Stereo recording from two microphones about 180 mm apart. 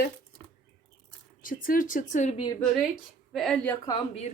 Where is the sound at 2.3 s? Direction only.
25° left (ahead or behind).